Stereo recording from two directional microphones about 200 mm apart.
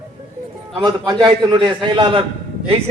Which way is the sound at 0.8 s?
20° right (ahead or behind).